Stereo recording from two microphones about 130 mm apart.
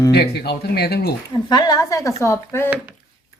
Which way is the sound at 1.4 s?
30° left (ahead or behind).